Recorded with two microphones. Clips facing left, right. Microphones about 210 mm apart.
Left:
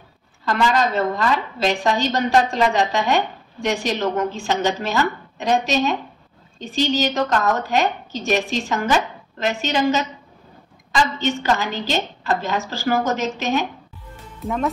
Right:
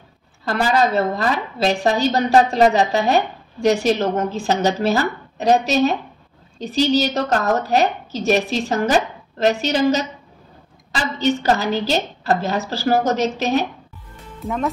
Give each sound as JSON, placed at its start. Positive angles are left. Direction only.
{"t": 0.5, "sound": "speech", "side_deg": -40}
{"t": 11.1, "sound": "speech", "side_deg": -40}
{"t": 14.4, "sound": "speech", "side_deg": 0}